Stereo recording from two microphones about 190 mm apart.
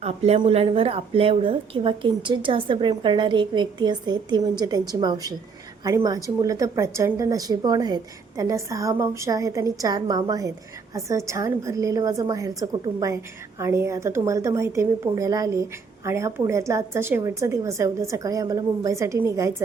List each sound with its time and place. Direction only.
0.0 s a woman's voice: 35° right (ahead or behind); by 19.6 s 15° right (ahead or behind)